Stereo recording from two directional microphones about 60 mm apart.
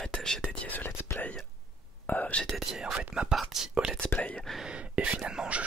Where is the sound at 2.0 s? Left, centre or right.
Left.